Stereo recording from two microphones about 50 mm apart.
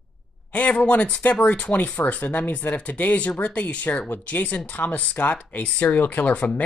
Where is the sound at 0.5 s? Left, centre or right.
Left.